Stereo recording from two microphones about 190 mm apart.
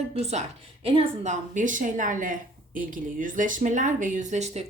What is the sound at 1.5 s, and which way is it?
Speech, 45° right (ahead or behind).